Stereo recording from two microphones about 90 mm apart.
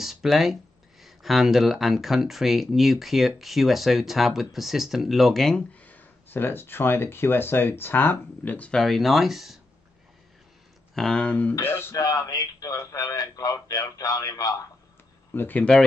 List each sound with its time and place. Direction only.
0.0 s speech: 5° right (ahead or behind)
5.9 s speech: 20° left (ahead or behind)
8.7 s speech: centre (ahead or behind)
11.0 s speech: 10° left (ahead or behind)
11.6 s speech: 25° left (ahead or behind)
12.0 s speech: 40° left (ahead or behind)
15.3 s speech: 20° left (ahead or behind)